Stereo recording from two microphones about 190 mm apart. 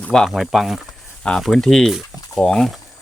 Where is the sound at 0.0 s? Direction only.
5° left (ahead or behind).